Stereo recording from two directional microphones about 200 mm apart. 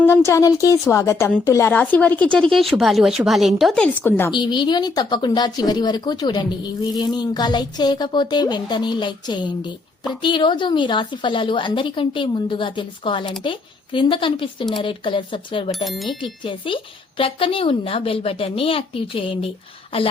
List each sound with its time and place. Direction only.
0.0 s a woman's voice: 15° left (ahead or behind)
4.3 s speech: 25° left (ahead or behind)
15.7 s speech: centre (ahead or behind)
16.2 s speech: 25° left (ahead or behind)